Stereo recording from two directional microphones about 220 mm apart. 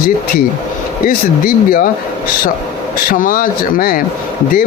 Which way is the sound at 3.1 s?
40° left (ahead or behind).